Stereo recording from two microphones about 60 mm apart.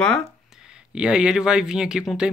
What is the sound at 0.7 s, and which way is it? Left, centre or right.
Speech, centre.